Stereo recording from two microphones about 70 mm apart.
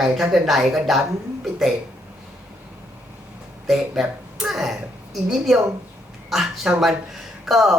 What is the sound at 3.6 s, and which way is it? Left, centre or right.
A woman's voice, centre.